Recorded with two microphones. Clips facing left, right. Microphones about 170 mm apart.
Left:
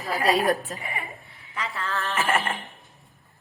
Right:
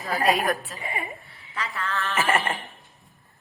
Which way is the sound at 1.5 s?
20° left (ahead or behind).